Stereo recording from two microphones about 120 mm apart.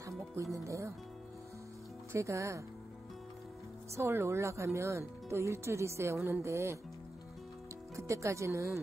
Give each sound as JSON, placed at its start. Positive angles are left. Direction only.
{"t": 0.4, "sound": "speech", "side_deg": -25}
{"t": 2.1, "sound": "speech", "side_deg": -25}
{"t": 3.9, "sound": "speech", "side_deg": -25}
{"t": 7.9, "sound": "speech", "side_deg": -25}